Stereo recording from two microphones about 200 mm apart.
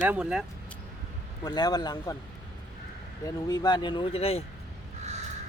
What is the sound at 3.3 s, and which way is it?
Speech, 20° left (ahead or behind).